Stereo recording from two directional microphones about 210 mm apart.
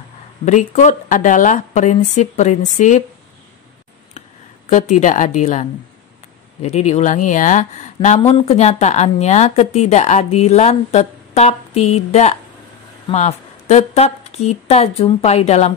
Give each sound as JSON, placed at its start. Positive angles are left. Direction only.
{"t": 0.5, "sound": "a woman's voice", "side_deg": 35}
{"t": 4.6, "sound": "a woman's voice", "side_deg": 35}